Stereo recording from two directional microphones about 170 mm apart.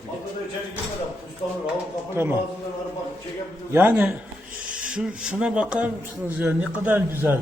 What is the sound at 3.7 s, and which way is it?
A man's voice, 10° right (ahead or behind).